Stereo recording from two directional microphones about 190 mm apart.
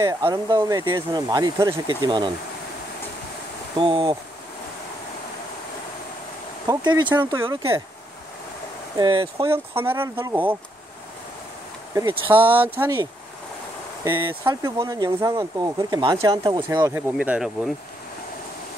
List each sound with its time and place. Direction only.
0.0 s speech: 20° right (ahead or behind)
3.7 s speech: 30° right (ahead or behind)
6.7 s speech: 25° right (ahead or behind)
8.9 s speech: 25° right (ahead or behind)
9.5 s speech: 10° right (ahead or behind)
11.9 s speech: 15° right (ahead or behind)
14.4 s speech: 15° right (ahead or behind)
17.2 s speech: 5° right (ahead or behind)